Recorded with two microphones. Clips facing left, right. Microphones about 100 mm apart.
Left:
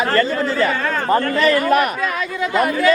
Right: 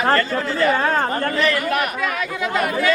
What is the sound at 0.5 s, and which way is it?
Speech, 40° right (ahead or behind).